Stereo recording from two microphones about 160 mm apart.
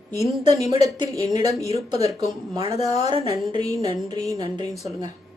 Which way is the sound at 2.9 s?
25° right (ahead or behind).